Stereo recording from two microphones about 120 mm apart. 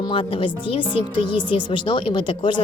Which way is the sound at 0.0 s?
45° left (ahead or behind).